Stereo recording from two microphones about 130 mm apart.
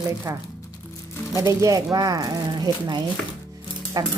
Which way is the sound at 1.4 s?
25° right (ahead or behind).